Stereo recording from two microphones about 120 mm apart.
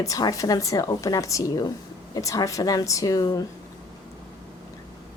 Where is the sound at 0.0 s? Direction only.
30° left (ahead or behind).